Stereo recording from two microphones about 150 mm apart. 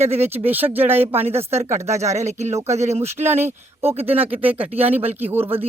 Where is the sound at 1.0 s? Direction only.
45° right (ahead or behind).